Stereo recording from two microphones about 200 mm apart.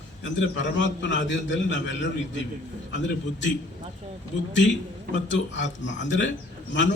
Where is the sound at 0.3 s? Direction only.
65° left (ahead or behind).